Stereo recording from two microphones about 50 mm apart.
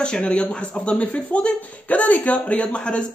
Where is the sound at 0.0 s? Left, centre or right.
Centre.